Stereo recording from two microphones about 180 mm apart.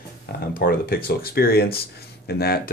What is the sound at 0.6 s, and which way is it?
Speech, 55° left (ahead or behind).